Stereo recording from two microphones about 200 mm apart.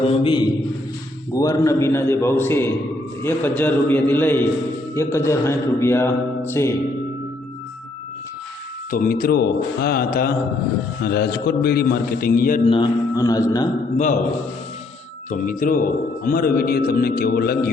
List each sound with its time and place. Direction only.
0.0 s music: 25° left (ahead or behind)
1.3 s a man's voice: 15° left (ahead or behind)
8.9 s a man's voice: 45° left (ahead or behind)
12.6 s music: 25° left (ahead or behind)
13.9 s a man's voice: 40° left (ahead or behind)
15.3 s a man's voice: 45° left (ahead or behind)